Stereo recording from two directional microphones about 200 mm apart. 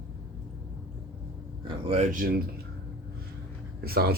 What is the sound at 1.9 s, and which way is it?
Speech, 35° right (ahead or behind).